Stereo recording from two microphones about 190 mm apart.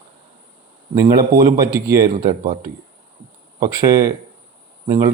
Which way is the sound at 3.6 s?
15° right (ahead or behind).